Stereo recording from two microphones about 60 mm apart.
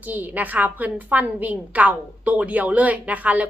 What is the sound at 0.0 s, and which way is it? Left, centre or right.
A woman's voice, right.